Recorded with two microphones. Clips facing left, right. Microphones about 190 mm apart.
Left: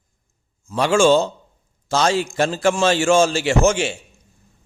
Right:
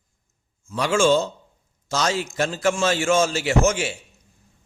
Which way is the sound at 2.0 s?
30° left (ahead or behind).